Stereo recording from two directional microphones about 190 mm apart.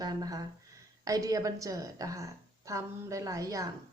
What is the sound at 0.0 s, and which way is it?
Speech, 20° right (ahead or behind).